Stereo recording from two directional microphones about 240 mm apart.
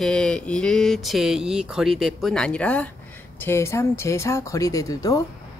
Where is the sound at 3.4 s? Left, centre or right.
Centre.